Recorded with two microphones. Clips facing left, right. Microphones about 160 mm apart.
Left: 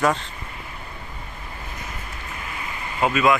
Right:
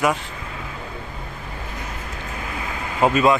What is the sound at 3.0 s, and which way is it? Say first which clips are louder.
Speech: right 3 dB; 35° right (ahead or behind).